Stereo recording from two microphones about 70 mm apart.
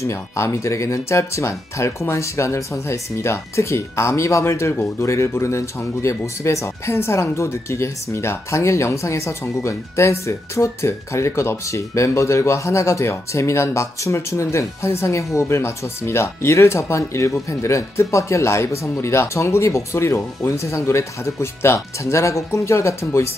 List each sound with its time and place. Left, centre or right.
0.0 s speech: left